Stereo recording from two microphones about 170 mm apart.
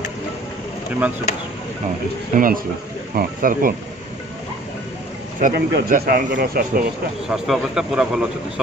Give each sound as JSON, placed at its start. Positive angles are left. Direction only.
{"t": 2.3, "sound": "speech", "side_deg": -55}
{"t": 5.4, "sound": "speech", "side_deg": -70}
{"t": 7.2, "sound": "speech", "side_deg": 0}